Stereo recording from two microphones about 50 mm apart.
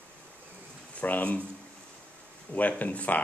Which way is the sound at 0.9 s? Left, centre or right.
Left.